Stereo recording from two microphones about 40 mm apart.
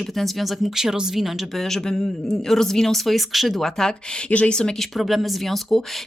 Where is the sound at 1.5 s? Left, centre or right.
Centre.